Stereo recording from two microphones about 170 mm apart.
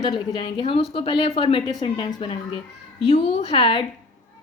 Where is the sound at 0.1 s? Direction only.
30° left (ahead or behind).